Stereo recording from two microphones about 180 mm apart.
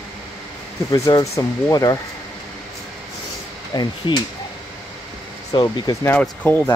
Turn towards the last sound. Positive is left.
turn(degrees=10)  # may be behind; listen again after turning